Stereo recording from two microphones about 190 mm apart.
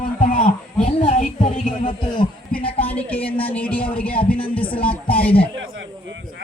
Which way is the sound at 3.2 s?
30° left (ahead or behind).